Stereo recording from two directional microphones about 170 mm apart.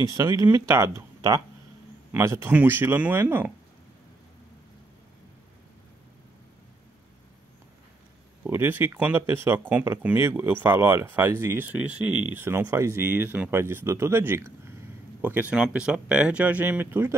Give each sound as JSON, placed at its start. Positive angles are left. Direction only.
{"t": 0.0, "sound": "speech", "side_deg": -15}
{"t": 8.5, "sound": "speech", "side_deg": -10}